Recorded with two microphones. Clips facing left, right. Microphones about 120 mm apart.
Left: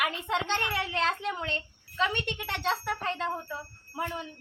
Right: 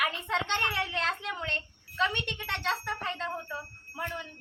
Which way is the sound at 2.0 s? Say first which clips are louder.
Left 2 dB; 10° left (ahead or behind).